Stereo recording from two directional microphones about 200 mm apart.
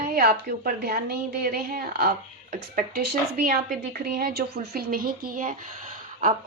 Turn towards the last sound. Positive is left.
turn(degrees=-40)  # may be behind; listen again after turning